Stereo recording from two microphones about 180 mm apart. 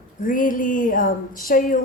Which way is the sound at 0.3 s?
50° left (ahead or behind).